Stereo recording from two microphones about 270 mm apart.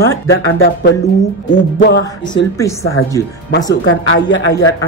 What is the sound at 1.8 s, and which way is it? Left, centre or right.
Speech, left.